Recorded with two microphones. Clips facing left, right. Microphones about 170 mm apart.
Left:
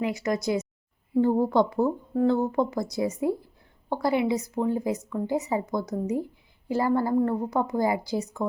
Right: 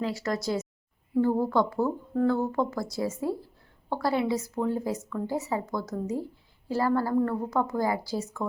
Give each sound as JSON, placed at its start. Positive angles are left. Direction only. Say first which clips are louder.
{"t": 0.0, "sound": "a woman's voice", "louder": "left 3 dB", "side_deg": 15}